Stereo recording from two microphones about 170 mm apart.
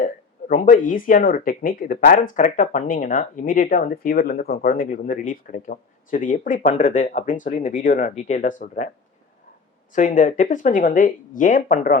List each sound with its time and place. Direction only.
0.0 s speech: 55° left (ahead or behind)
9.9 s speech: 50° left (ahead or behind)